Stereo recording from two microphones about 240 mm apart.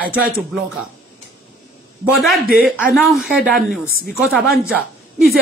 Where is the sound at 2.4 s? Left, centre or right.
Right.